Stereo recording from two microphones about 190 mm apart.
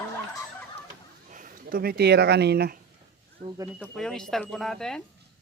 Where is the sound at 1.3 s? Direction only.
50° right (ahead or behind).